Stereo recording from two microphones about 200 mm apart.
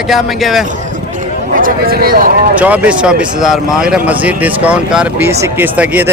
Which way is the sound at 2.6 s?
5° right (ahead or behind).